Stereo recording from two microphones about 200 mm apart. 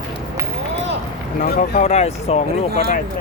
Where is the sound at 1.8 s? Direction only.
35° left (ahead or behind).